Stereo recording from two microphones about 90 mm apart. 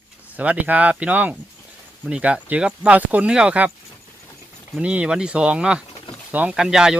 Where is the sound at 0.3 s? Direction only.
15° right (ahead or behind).